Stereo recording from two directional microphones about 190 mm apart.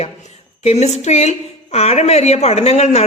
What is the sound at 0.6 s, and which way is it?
A woman's voice, 35° left (ahead or behind).